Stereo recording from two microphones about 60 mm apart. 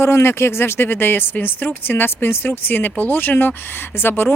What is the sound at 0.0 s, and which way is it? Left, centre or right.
Speech, left.